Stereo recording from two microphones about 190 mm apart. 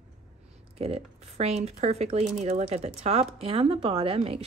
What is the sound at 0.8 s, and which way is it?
Speech, 35° right (ahead or behind).